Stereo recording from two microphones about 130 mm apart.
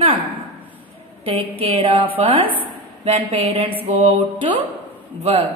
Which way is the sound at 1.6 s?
50° right (ahead or behind).